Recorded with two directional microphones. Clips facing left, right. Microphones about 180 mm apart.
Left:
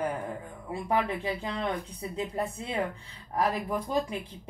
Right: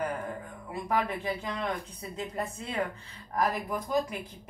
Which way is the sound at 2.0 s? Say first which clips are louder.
Left 3 dB; 25° left (ahead or behind).